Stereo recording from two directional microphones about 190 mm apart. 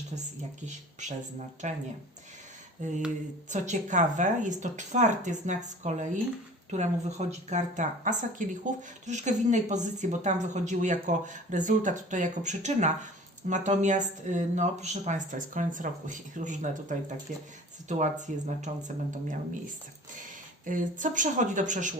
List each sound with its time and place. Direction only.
0.6 s speech: 40° right (ahead or behind)
2.8 s speech: 40° right (ahead or behind)
20.7 s speech: 45° right (ahead or behind)